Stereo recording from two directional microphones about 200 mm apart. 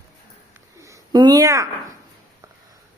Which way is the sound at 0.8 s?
15° right (ahead or behind).